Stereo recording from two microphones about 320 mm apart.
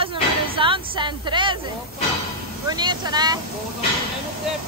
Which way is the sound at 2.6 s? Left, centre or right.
Centre.